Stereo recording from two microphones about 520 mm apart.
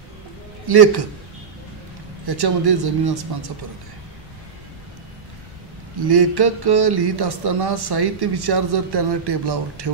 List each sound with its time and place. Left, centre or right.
0.7 s speech: right
2.2 s speech: right
5.9 s speech: right